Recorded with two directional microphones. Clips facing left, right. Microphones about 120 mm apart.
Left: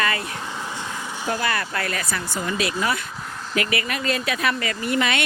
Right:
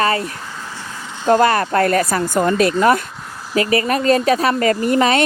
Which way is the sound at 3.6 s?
35° right (ahead or behind).